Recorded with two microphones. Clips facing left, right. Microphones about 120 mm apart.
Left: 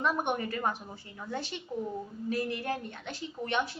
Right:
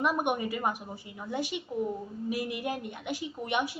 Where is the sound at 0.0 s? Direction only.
10° right (ahead or behind).